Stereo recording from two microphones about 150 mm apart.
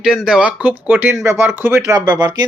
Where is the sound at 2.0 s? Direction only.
25° right (ahead or behind).